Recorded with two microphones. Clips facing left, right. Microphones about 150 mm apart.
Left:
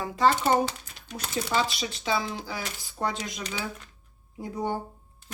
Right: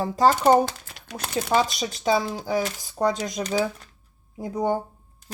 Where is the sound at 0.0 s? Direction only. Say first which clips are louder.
Right 4 dB; 40° right (ahead or behind).